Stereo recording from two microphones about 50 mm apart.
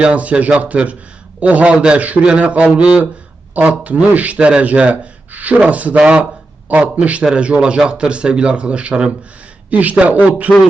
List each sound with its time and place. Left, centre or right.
0.0 s speech: right
2.0 s speech: right